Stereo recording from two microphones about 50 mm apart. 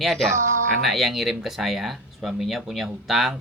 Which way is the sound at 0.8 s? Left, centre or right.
Centre.